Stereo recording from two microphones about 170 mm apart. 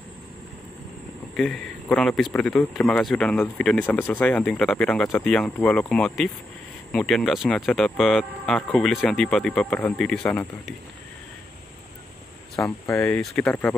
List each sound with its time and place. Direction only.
1.3 s speech: centre (ahead or behind)
12.5 s speech: 15° left (ahead or behind)
13.0 s speech: 5° left (ahead or behind)